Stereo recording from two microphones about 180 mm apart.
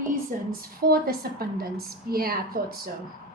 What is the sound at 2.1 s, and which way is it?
Speech, 55° right (ahead or behind).